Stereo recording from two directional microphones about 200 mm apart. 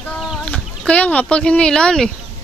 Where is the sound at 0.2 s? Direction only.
5° left (ahead or behind).